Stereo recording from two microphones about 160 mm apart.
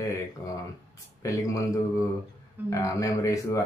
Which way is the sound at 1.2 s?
20° left (ahead or behind).